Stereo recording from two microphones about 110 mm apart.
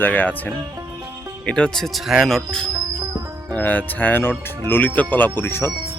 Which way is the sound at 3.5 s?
15° left (ahead or behind).